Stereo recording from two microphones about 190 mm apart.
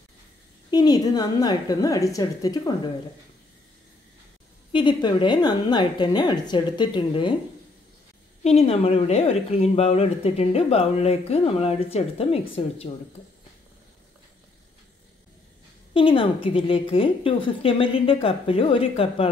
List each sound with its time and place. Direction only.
0.7 s a woman's voice: 20° left (ahead or behind)
4.7 s a woman's voice: 25° left (ahead or behind)
8.5 s speech: 30° left (ahead or behind)
15.9 s a woman's voice: 30° left (ahead or behind)